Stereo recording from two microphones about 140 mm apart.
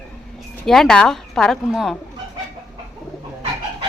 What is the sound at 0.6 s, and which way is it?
A woman's voice, centre (ahead or behind).